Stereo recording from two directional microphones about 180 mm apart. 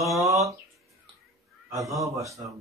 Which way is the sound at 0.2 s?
15° right (ahead or behind).